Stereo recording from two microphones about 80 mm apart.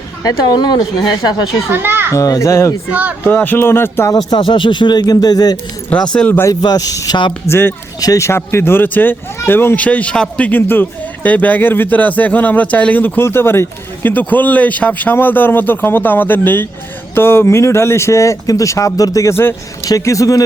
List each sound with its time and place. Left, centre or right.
0.2 s speech: left
1.7 s a child's voice: right
2.1 s speech: left
2.9 s speech: centre
3.2 s speech: left
4.3 s speech: left
5.9 s speech: centre
6.5 s speech: left
7.4 s speech: left
8.4 s speech: left
9.8 s speech: centre; by 19.5 s left
19.9 s speech: left